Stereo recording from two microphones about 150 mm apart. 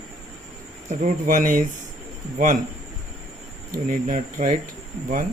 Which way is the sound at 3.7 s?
60° right (ahead or behind).